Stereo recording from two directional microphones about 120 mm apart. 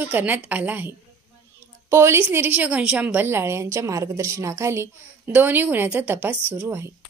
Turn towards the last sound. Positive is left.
turn(degrees=-20)  # may be behind; listen again after turning